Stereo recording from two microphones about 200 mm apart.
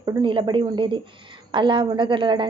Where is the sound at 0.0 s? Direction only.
25° right (ahead or behind).